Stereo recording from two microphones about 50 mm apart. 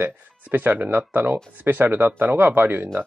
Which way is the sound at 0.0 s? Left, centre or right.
Right.